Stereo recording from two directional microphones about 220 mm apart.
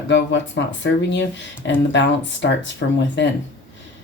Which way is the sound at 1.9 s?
55° left (ahead or behind).